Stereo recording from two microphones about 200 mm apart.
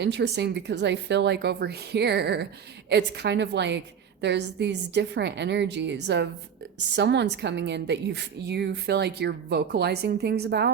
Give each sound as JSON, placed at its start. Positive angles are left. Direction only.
{"t": 0.0, "sound": "a woman's voice", "side_deg": -60}